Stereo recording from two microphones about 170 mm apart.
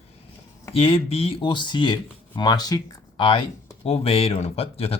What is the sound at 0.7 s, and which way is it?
Speech, 35° left (ahead or behind).